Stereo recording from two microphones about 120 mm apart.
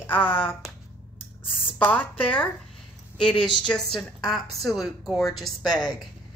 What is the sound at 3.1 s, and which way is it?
Speech, 40° left (ahead or behind).